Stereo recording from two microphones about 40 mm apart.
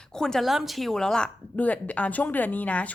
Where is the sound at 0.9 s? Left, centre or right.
Centre.